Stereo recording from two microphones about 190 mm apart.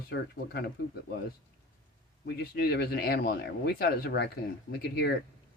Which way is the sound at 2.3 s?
55° left (ahead or behind).